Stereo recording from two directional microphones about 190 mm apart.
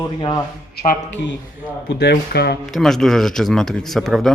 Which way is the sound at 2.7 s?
Centre (ahead or behind).